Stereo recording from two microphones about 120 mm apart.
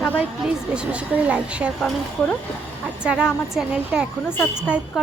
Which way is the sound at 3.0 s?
5° right (ahead or behind).